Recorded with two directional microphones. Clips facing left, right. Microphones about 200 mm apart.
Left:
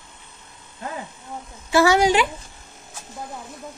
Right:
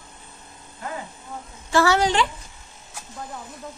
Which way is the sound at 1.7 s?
10° left (ahead or behind).